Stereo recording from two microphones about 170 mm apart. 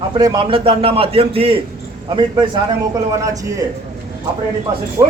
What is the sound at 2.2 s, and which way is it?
A man's voice, 25° right (ahead or behind).